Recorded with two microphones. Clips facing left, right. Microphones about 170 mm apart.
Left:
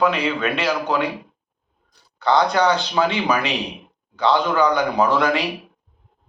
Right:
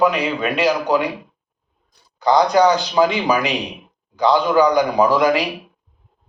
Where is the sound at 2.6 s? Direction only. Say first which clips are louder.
Right 4 dB; 35° right (ahead or behind).